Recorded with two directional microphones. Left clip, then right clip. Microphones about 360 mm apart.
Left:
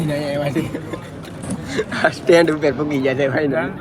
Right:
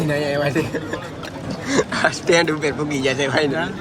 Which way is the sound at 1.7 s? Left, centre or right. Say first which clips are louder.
Even; centre.